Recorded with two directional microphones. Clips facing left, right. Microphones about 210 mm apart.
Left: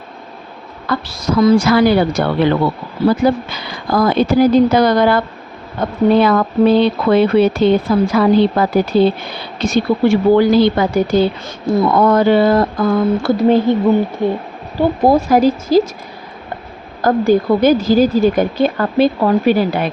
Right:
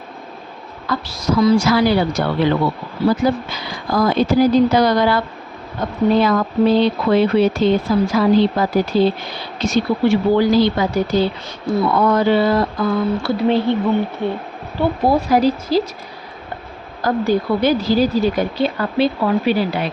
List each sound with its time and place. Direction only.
0.9 s speech: 55° left (ahead or behind)
17.0 s speech: 50° left (ahead or behind)